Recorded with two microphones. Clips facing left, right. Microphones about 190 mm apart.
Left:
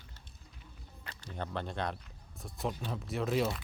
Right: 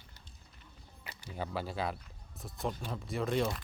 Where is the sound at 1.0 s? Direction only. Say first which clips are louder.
Right 1 dB; 5° right (ahead or behind).